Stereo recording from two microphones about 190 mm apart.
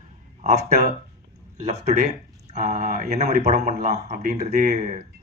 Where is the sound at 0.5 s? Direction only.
35° right (ahead or behind).